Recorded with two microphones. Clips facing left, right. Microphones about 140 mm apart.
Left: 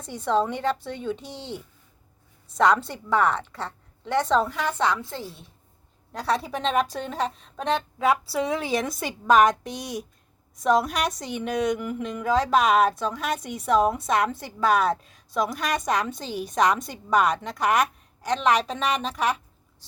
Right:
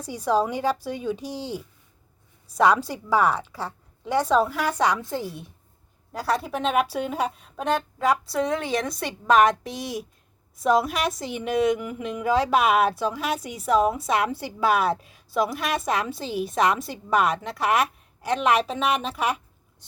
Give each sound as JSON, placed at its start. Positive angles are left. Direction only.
{"t": 0.1, "sound": "a woman's voice", "side_deg": -5}
{"t": 2.6, "sound": "a woman's voice", "side_deg": -10}
{"t": 6.1, "sound": "speech", "side_deg": 0}